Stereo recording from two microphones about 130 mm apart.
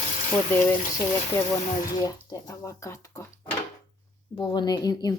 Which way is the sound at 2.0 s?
25° left (ahead or behind).